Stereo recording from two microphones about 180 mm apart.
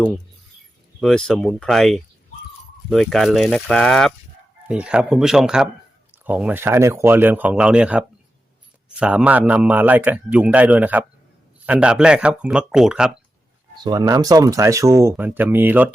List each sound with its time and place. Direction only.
1.0 s a man's voice: 5° left (ahead or behind)
13.8 s a man's voice: 20° right (ahead or behind)